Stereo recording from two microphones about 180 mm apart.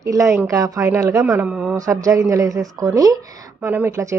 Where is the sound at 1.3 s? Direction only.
5° right (ahead or behind).